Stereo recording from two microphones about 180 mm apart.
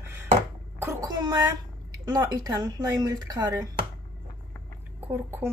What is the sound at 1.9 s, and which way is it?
Speech, 20° right (ahead or behind).